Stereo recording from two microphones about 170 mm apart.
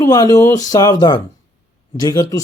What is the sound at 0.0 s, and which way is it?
Speech, 20° left (ahead or behind).